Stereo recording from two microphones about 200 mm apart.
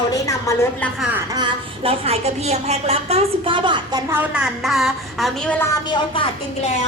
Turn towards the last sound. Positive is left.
turn(degrees=20)  # may be behind; listen again after turning